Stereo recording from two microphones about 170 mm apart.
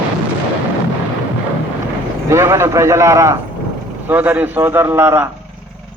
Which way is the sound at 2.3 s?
15° right (ahead or behind).